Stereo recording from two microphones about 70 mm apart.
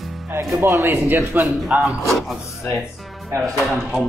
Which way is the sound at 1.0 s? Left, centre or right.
Right.